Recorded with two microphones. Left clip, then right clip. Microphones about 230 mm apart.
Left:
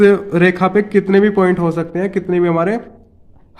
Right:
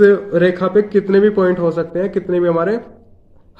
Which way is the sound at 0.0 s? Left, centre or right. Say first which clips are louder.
Even; left.